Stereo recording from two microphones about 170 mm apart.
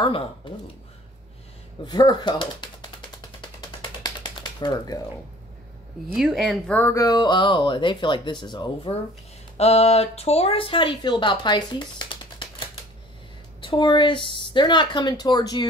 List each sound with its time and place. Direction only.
0.0 s speech: 35° left (ahead or behind)
1.9 s typewriter: 25° left (ahead or behind)
4.0 s typing: 25° left (ahead or behind)
6.1 s speech: centre (ahead or behind)
6.8 s speech: 20° left (ahead or behind)
9.6 s speech: 35° left (ahead or behind)